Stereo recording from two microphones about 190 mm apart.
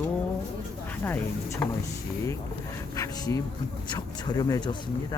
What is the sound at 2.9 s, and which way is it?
Speech, 20° left (ahead or behind).